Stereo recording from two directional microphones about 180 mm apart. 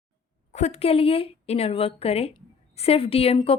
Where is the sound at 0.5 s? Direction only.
35° left (ahead or behind).